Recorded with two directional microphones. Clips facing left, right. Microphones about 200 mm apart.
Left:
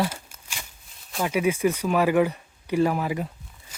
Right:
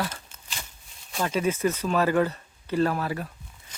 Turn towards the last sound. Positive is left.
turn(degrees=15)  # may be behind; listen again after turning